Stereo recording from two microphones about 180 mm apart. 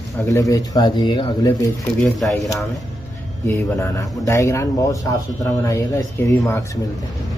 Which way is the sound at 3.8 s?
20° left (ahead or behind).